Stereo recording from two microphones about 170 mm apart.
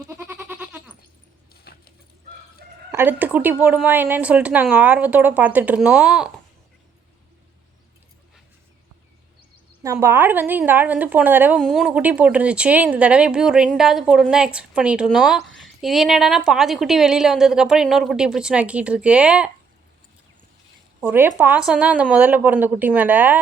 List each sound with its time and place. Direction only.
0.1 s goat: 15° right (ahead or behind)
1.7 s dog: 65° left (ahead or behind)
2.9 s speech: 10° right (ahead or behind)
9.8 s speech: 15° right (ahead or behind)
11.6 s speech: centre (ahead or behind)
21.0 s speech: 15° right (ahead or behind)